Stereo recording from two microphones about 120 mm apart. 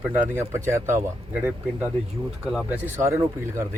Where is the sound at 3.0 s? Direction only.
25° right (ahead or behind).